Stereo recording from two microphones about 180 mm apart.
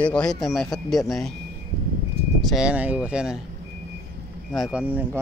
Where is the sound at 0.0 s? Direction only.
5° left (ahead or behind).